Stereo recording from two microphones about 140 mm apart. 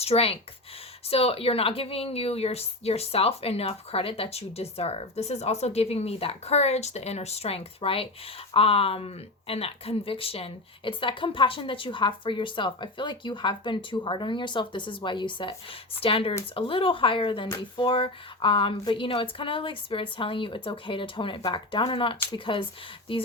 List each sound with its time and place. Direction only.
0.0 s a woman's voice: 45° left (ahead or behind)